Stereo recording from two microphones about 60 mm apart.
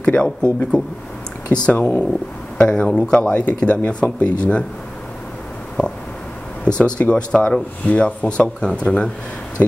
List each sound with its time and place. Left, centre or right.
0.0 s a man's voice: centre
3.2 s speech: left
6.8 s a man's voice: centre
9.6 s speech: left